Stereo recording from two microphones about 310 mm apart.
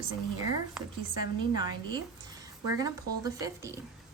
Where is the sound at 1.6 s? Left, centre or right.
Centre.